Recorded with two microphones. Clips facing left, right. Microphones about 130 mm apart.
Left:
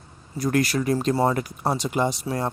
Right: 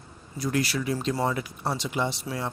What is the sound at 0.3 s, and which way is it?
Speech, 50° left (ahead or behind).